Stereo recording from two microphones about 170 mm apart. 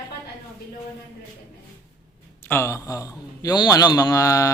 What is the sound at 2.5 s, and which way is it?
A man's voice, 15° left (ahead or behind).